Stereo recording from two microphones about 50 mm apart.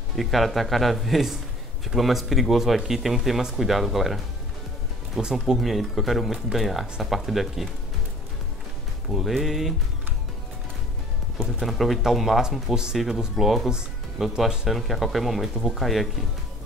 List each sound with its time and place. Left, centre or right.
0.1 s speech: centre
9.1 s speech: centre
11.6 s speech: centre
13.4 s speech: centre
13.7 s music: centre
14.7 s speech: centre